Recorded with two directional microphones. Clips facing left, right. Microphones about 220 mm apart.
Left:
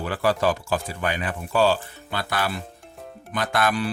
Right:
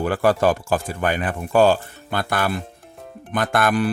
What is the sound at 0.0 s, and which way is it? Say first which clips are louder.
Speech: right 5 dB; 50° right (ahead or behind).